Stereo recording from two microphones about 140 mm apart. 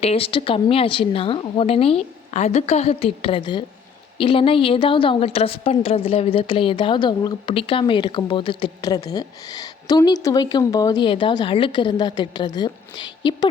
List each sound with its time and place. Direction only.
0.0 s a woman's voice: 45° left (ahead or behind); by 11.0 s 25° left (ahead or behind)
11.0 s a woman's voice: 35° left (ahead or behind)